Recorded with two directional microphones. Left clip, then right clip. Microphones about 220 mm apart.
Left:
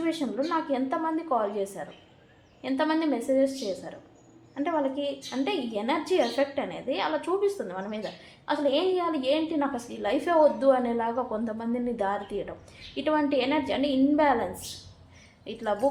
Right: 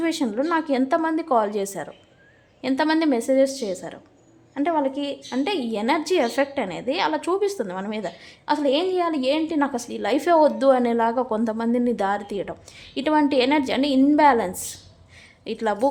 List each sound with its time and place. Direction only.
0.0 s a woman's voice: 50° right (ahead or behind)